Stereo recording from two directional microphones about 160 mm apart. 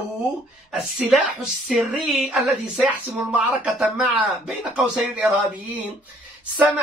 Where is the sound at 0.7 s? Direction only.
5° right (ahead or behind).